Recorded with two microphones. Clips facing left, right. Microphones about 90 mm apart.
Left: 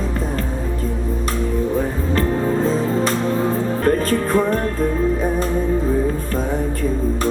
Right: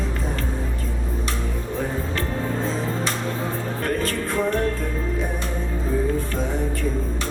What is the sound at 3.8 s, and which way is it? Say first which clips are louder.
Music: left 6 dB; 40° left (ahead or behind).